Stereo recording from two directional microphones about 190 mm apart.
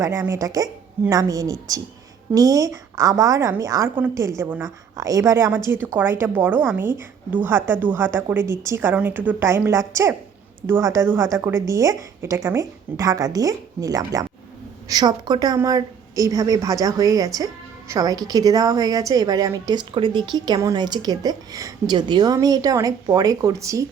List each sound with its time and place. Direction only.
0.0 s a woman's voice: 15° right (ahead or behind)